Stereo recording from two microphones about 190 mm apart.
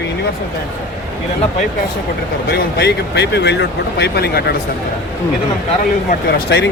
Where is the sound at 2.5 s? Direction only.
60° left (ahead or behind).